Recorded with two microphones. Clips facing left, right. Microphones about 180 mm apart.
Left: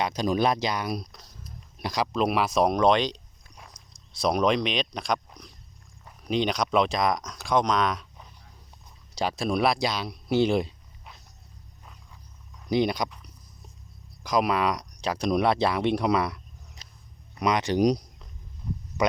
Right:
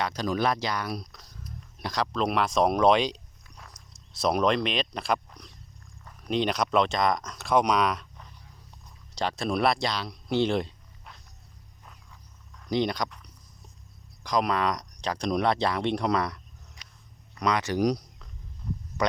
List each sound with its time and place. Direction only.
0.0 s speech: 15° left (ahead or behind); by 5.2 s 5° right (ahead or behind)
6.2 s speech: centre (ahead or behind)
9.1 s speech: 5° left (ahead or behind)
12.6 s speech: 10° left (ahead or behind)
14.3 s speech: 10° left (ahead or behind)
17.4 s speech: 20° left (ahead or behind)